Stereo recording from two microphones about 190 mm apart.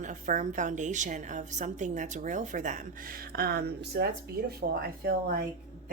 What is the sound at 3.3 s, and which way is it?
Speech, 55° right (ahead or behind).